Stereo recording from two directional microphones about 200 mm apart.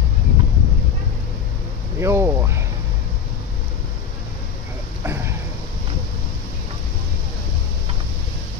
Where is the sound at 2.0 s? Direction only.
15° right (ahead or behind).